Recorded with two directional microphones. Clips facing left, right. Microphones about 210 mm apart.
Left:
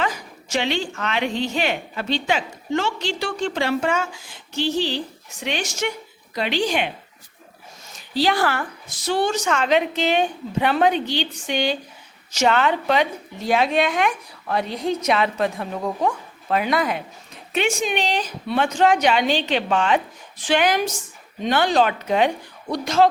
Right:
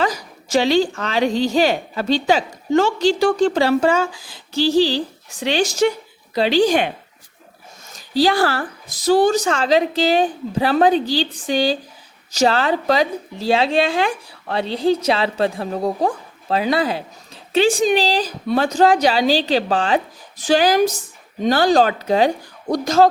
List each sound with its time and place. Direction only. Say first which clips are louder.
0.0 s a woman's voice: right 4 dB; 40° right (ahead or behind)
8.1 s a woman's voice: right 4 dB; 35° right (ahead or behind)